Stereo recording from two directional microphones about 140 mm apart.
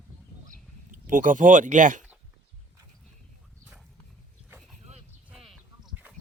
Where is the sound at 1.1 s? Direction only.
70° right (ahead or behind).